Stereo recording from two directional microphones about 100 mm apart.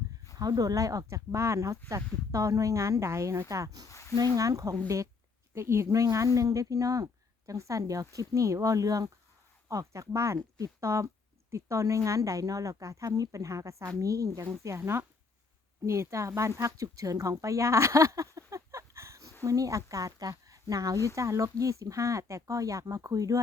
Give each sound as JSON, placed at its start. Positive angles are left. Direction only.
{"t": 0.3, "sound": "speech", "side_deg": -40}
{"t": 3.8, "sound": "a sound", "side_deg": 30}
{"t": 4.4, "sound": "speech", "side_deg": -35}